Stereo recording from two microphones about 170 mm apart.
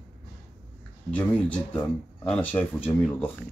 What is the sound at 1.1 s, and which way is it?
Speech, 10° left (ahead or behind).